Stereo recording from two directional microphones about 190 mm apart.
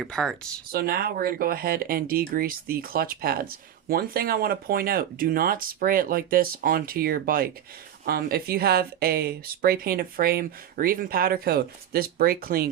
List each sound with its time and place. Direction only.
0.0 s speech: centre (ahead or behind)
0.7 s speech: 55° right (ahead or behind)